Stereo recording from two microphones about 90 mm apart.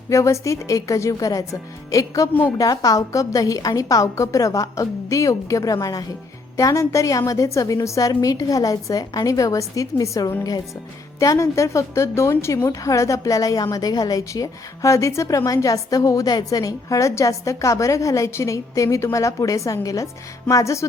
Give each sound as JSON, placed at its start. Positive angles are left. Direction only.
{"t": 0.1, "sound": "a woman's voice", "side_deg": 35}